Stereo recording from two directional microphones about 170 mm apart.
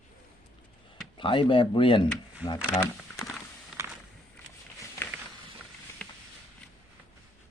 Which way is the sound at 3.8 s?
15° right (ahead or behind).